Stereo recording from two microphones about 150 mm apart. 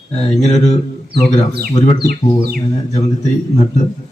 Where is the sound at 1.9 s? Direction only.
90° right.